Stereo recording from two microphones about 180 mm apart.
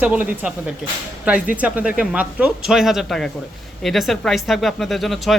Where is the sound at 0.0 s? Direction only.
10° right (ahead or behind).